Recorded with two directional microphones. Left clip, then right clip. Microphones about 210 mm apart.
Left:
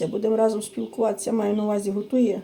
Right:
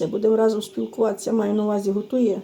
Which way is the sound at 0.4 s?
25° right (ahead or behind).